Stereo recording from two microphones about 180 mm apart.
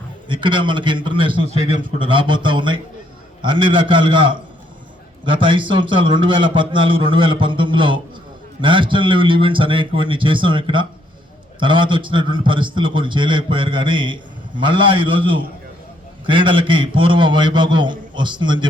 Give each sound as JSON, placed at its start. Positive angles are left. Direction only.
{"t": 0.3, "sound": "a man's voice", "side_deg": -25}